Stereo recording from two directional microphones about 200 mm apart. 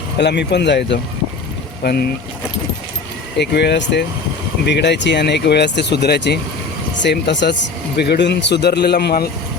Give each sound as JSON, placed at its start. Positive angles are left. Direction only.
{"t": 0.2, "sound": "speech", "side_deg": 60}
{"t": 3.3, "sound": "speech", "side_deg": 55}